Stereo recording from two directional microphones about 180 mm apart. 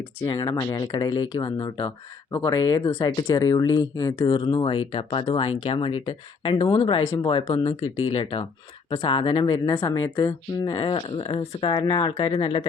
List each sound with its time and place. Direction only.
0.3 s speech: 20° left (ahead or behind)
9.6 s speech: 15° left (ahead or behind)
10.8 s speech: 30° left (ahead or behind)